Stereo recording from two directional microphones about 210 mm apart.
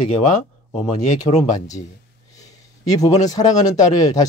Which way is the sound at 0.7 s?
35° left (ahead or behind).